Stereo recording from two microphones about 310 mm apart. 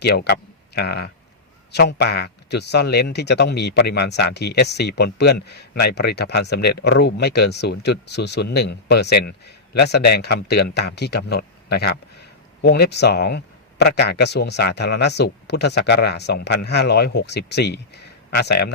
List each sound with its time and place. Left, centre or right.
0.0 s speech: left